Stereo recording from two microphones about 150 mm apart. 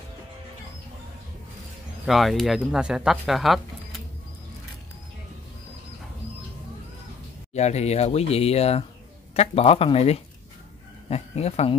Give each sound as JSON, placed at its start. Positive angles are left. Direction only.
{"t": 2.0, "sound": "speech", "side_deg": 0}
{"t": 7.5, "sound": "speech", "side_deg": 45}